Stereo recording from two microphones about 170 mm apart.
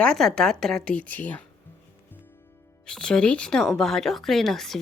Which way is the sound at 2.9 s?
5° left (ahead or behind).